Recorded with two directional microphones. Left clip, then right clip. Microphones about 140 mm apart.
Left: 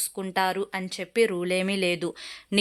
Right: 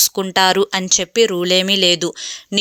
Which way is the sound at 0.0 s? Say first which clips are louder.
Right 12 dB; 40° right (ahead or behind).